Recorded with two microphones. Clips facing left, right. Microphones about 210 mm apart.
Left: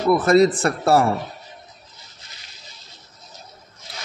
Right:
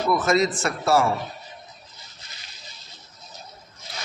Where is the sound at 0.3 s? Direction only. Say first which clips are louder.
Left 7 dB; 35° left (ahead or behind).